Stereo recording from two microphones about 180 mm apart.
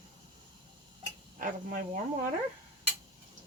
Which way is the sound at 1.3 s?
50° right (ahead or behind).